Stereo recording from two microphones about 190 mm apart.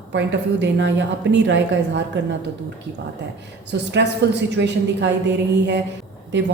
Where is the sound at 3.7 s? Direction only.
65° right (ahead or behind).